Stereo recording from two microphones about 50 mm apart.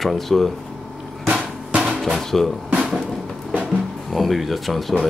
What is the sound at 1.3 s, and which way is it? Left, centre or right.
Drum, right.